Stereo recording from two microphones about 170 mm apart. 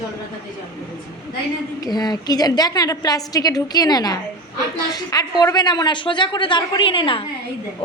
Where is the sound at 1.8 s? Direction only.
25° left (ahead or behind).